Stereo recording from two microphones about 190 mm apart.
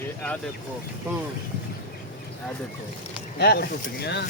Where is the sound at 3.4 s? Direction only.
60° left (ahead or behind).